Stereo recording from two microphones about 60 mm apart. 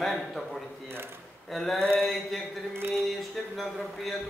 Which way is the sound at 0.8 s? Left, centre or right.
Right.